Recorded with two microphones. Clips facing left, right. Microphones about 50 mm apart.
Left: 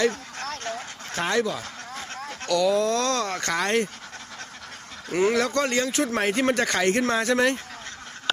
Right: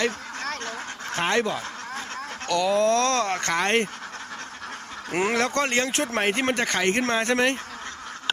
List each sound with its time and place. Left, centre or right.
1.1 s speech: right
5.1 s speech: right
5.5 s speech: right
6.1 s speech: right